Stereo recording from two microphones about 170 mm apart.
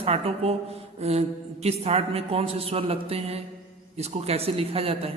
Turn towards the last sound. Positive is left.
turn(degrees=-35)  # may be behind; listen again after turning